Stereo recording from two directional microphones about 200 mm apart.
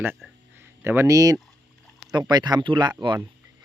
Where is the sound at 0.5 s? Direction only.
10° right (ahead or behind).